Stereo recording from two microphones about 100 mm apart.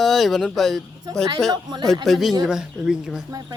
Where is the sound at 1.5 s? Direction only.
45° right (ahead or behind).